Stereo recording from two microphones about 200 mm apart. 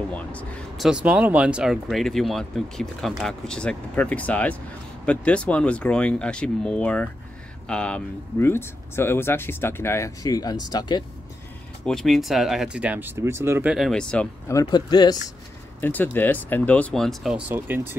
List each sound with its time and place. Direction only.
0.1 s speech: 5° left (ahead or behind)
11.8 s speech: 5° left (ahead or behind)
14.5 s speech: 20° left (ahead or behind)
15.8 s speech: 10° left (ahead or behind); by 17.8 s 10° right (ahead or behind)